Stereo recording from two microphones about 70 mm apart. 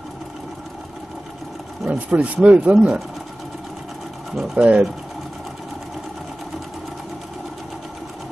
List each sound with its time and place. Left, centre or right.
1.9 s speech: centre
4.6 s speech: centre